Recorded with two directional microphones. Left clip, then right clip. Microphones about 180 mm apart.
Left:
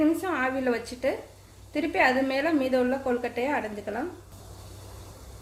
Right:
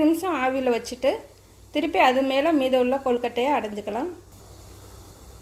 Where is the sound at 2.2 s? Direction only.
35° right (ahead or behind).